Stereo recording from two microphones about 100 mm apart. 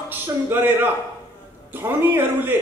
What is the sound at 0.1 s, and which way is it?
A man's voice, 20° right (ahead or behind).